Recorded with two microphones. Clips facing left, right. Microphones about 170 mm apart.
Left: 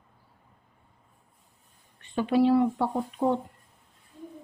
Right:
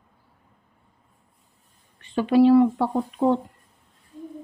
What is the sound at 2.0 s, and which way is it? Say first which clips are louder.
Speech: right 6 dB; 90° right.